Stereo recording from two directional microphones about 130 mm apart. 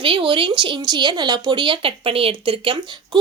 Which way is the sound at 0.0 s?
40° right (ahead or behind).